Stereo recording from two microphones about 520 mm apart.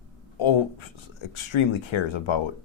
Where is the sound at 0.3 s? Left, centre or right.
Left.